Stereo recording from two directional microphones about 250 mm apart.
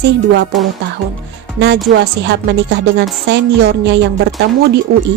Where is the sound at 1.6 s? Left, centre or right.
Right.